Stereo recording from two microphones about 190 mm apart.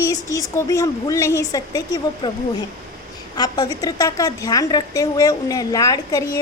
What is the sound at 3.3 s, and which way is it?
A woman's voice, 20° left (ahead or behind).